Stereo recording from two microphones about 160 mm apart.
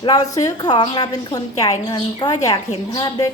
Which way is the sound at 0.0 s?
25° left (ahead or behind).